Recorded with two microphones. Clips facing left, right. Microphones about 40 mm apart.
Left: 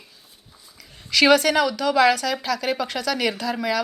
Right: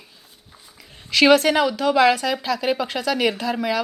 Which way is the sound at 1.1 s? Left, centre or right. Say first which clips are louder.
Right 2 dB; centre.